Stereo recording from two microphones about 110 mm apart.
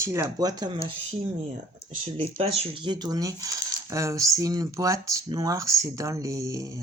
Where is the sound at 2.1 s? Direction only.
55° right (ahead or behind).